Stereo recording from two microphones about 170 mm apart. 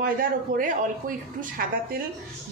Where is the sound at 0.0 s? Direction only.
55° right (ahead or behind).